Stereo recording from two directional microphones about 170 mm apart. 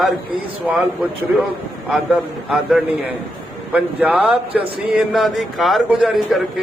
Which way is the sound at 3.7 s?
10° right (ahead or behind).